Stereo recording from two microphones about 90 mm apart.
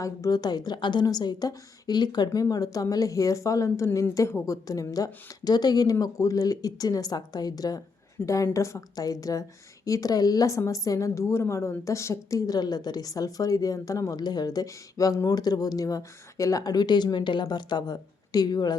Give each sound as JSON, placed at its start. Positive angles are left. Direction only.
{"t": 0.0, "sound": "a woman's voice", "side_deg": 40}
{"t": 8.2, "sound": "a woman's voice", "side_deg": 15}
{"t": 8.5, "sound": "a woman's voice", "side_deg": 35}